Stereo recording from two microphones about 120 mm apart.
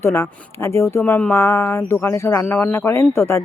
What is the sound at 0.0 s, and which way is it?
Speech, 20° left (ahead or behind).